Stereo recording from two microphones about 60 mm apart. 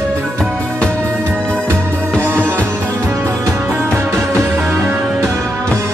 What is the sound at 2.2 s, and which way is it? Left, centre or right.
Music, right.